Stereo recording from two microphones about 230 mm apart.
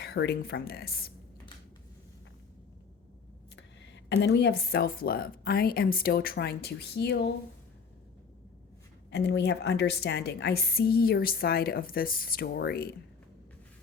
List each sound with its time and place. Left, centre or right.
0.0 s a woman's voice: left
3.5 s a woman's voice: left
9.0 s a woman's voice: left